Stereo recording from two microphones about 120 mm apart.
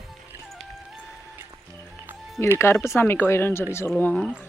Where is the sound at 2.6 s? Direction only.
20° left (ahead or behind).